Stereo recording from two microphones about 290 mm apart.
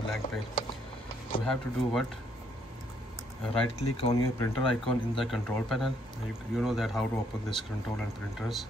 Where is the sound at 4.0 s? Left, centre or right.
Centre.